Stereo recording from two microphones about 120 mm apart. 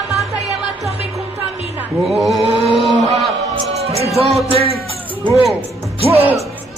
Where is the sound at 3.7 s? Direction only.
60° right (ahead or behind).